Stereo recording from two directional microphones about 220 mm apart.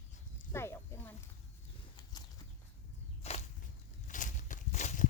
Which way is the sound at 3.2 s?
30° left (ahead or behind).